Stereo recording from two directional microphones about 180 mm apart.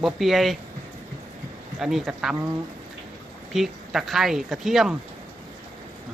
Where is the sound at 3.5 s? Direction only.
Centre (ahead or behind).